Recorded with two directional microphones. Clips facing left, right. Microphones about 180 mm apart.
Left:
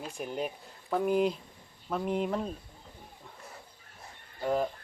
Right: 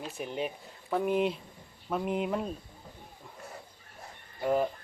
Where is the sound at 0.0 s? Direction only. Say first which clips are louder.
Even; centre (ahead or behind).